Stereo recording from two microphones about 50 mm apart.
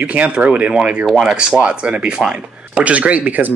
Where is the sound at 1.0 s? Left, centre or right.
Centre.